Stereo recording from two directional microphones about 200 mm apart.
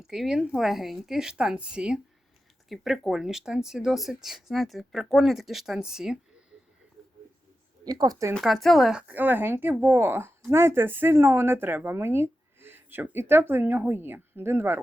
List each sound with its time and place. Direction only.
0.1 s speech: centre (ahead or behind)
7.9 s a woman's voice: 20° right (ahead or behind)
8.4 s speech: centre (ahead or behind)